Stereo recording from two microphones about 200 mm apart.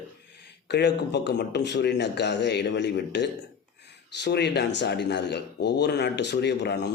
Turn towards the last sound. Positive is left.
turn(degrees=55)  # may be behind; listen again after turning